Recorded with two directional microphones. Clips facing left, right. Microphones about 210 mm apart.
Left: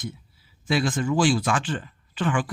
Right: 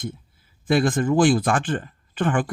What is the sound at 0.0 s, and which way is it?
Speech, 50° right (ahead or behind).